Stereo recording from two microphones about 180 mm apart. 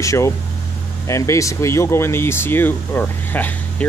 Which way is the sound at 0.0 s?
15° left (ahead or behind).